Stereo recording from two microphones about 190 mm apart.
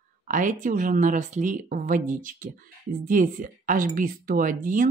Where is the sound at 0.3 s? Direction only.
45° right (ahead or behind).